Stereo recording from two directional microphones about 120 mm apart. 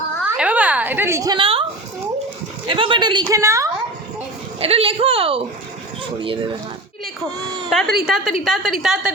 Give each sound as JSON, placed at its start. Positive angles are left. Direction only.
{"t": 0.3, "sound": "a sound", "side_deg": -10}
{"t": 1.4, "sound": "a woman's voice", "side_deg": -50}
{"t": 2.6, "sound": "a woman's voice", "side_deg": -45}
{"t": 3.2, "sound": "a woman's voice", "side_deg": -25}
{"t": 4.6, "sound": "a woman's voice", "side_deg": -55}
{"t": 7.7, "sound": "a woman's voice", "side_deg": 0}